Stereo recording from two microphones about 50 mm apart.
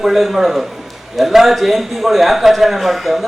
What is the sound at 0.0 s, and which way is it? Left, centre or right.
A man's voice, centre.